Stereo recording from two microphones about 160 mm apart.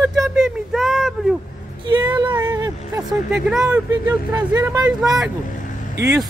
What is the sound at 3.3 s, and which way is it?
Speech, 5° right (ahead or behind).